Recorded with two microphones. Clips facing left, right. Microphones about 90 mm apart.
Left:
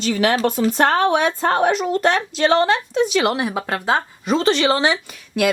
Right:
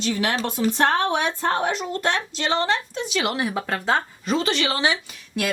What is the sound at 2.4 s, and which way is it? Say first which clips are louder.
Speech: left 7 dB; 55° left (ahead or behind).